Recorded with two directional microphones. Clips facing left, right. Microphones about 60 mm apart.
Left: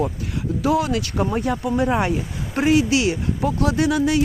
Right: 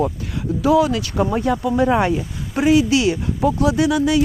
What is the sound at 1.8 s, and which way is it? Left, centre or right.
Speech, centre.